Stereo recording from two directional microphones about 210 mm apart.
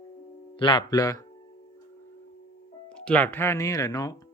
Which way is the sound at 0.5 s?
25° left (ahead or behind).